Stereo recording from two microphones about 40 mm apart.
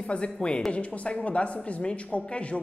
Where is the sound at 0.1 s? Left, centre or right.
Left.